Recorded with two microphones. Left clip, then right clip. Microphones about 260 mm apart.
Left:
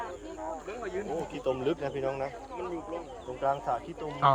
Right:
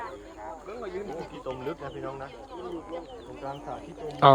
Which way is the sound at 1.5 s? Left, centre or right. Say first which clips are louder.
Left 6 dB; left.